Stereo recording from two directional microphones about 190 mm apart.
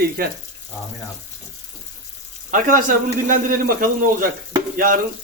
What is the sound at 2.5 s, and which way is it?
A man's voice, 45° right (ahead or behind).